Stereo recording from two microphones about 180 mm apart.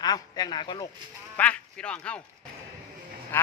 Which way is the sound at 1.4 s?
5° left (ahead or behind).